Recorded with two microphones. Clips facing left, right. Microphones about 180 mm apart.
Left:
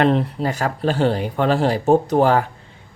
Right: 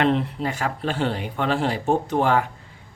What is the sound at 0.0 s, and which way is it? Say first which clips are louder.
Speech: left 4 dB; 40° left (ahead or behind).